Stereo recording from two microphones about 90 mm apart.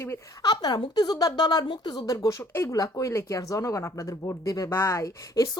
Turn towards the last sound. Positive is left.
turn(degrees=35)  # may be behind; listen again after turning